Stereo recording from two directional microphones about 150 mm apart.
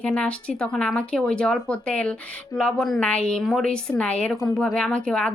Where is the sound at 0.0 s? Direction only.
5° left (ahead or behind).